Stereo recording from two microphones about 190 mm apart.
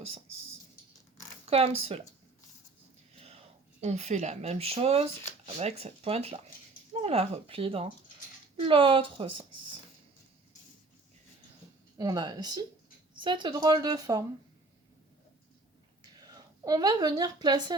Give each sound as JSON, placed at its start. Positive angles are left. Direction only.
{"t": 1.5, "sound": "speech", "side_deg": -30}
{"t": 3.2, "sound": "whispering", "side_deg": -35}
{"t": 3.8, "sound": "a woman's voice", "side_deg": -35}
{"t": 11.9, "sound": "a woman's voice", "side_deg": -20}
{"t": 16.2, "sound": "a woman's voice", "side_deg": -20}